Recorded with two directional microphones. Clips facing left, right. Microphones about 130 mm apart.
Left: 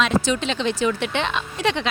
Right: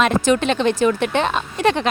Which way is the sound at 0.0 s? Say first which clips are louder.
Right 4 dB; 55° right (ahead or behind).